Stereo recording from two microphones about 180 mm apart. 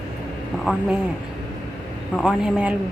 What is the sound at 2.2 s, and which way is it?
Speech, 5° right (ahead or behind).